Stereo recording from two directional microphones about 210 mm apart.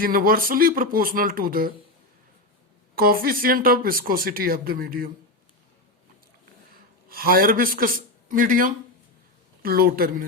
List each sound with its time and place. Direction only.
0.0 s speech: 45° right (ahead or behind)
2.9 s speech: 45° right (ahead or behind)
7.1 s speech: 45° right (ahead or behind)